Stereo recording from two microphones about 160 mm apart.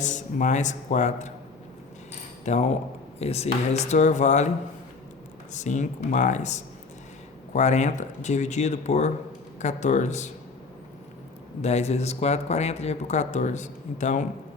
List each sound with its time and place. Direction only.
0.0 s speech: 50° left (ahead or behind)
2.4 s speech: 45° left (ahead or behind)
11.6 s speech: 45° left (ahead or behind)